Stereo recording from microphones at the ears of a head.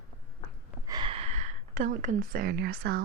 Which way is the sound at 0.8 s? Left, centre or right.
Right.